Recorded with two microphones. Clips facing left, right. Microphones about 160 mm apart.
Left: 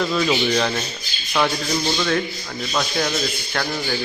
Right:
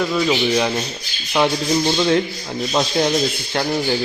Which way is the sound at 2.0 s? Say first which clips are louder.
Right 5 dB; 25° right (ahead or behind).